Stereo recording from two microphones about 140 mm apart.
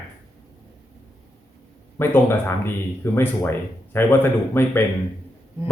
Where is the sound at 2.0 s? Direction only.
15° left (ahead or behind).